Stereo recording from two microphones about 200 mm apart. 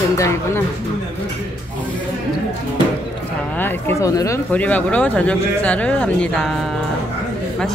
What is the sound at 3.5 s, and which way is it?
Speech, 10° left (ahead or behind).